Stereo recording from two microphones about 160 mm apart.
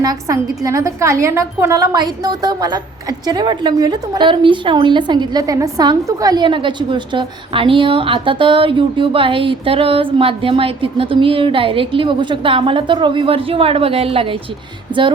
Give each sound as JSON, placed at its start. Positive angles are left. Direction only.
{"t": 0.0, "sound": "a woman's voice", "side_deg": -20}